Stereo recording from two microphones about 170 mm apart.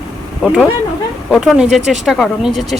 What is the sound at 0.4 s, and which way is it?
Speech, 5° right (ahead or behind).